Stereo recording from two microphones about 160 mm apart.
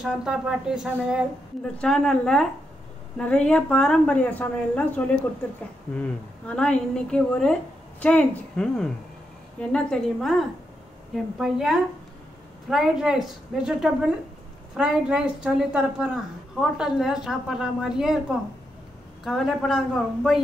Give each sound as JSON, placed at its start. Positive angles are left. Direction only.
{"t": 0.0, "sound": "a woman's voice", "side_deg": -5}
{"t": 1.8, "sound": "a woman's voice", "side_deg": 5}
{"t": 19.2, "sound": "a woman's voice", "side_deg": 0}